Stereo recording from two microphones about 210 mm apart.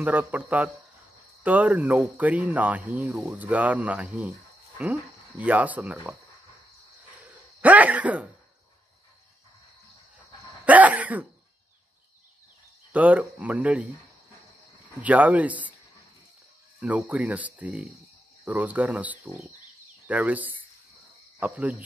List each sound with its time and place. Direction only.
0.0 s speech: 10° right (ahead or behind)
5.4 s speech: 5° right (ahead or behind)
7.6 s speech: 5° right (ahead or behind)
10.6 s speech: 5° right (ahead or behind)
12.9 s speech: 5° right (ahead or behind)
15.0 s speech: 5° right (ahead or behind)
16.8 s speech: 5° right (ahead or behind)